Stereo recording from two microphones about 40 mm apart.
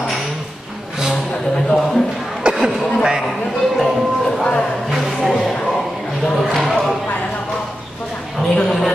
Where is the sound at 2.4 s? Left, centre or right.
Right.